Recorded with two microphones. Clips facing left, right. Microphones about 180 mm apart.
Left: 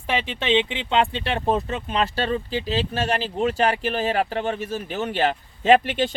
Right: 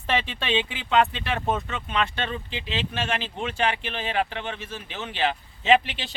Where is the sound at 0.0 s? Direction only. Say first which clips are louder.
Left 2 dB; 15° left (ahead or behind).